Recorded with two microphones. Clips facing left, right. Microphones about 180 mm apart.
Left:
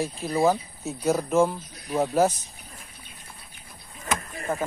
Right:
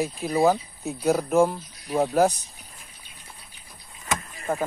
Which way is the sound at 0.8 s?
Centre (ahead or behind).